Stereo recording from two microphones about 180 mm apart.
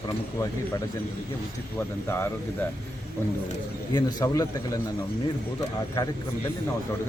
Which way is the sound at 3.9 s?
20° left (ahead or behind).